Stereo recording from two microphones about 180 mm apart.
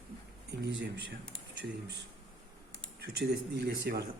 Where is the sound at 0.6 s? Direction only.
85° right.